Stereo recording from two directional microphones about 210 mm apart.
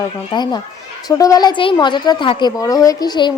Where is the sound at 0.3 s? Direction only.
20° left (ahead or behind).